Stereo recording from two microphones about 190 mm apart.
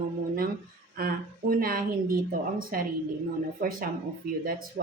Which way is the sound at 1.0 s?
50° right (ahead or behind).